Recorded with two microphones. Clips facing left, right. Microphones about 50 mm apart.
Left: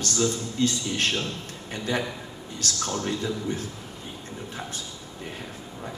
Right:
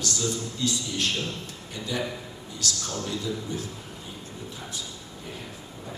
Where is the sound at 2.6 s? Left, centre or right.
Left.